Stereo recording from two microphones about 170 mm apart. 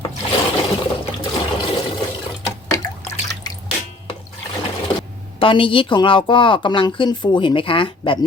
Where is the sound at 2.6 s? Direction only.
20° left (ahead or behind).